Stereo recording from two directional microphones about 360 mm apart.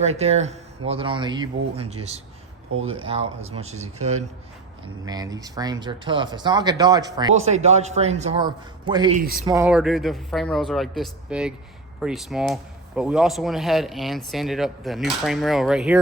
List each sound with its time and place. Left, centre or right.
0.0 s speech: centre
2.7 s speech: right
3.1 s speech: centre
5.0 s speech: centre
9.2 s speech: right
9.5 s speech: centre